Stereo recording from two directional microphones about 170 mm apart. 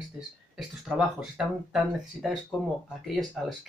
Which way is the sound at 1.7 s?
Centre (ahead or behind).